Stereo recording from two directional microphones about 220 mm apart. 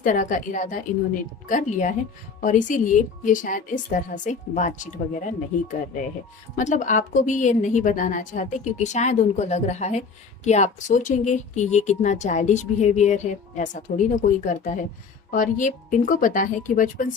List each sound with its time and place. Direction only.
0.0 s speech: 35° left (ahead or behind)
6.6 s speech: 35° left (ahead or behind)